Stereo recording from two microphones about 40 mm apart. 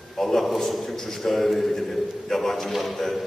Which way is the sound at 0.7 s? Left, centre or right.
Centre.